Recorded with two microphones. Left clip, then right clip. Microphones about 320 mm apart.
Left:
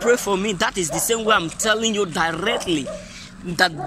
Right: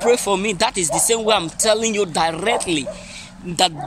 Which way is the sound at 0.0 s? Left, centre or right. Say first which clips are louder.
Right 2 dB; centre.